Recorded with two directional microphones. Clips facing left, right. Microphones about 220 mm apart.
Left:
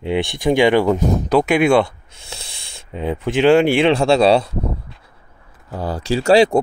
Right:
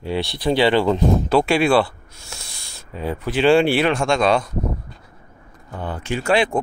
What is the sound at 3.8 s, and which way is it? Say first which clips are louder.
Speech: left 5 dB; 35° left (ahead or behind).